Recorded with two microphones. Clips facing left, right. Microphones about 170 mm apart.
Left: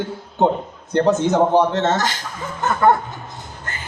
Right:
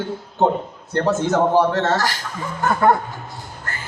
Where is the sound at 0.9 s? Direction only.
20° left (ahead or behind).